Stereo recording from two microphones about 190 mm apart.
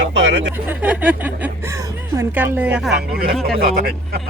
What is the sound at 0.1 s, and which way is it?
Speech, 70° right (ahead or behind).